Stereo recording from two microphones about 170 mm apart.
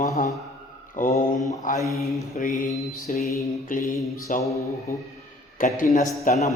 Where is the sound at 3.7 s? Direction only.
50° left (ahead or behind).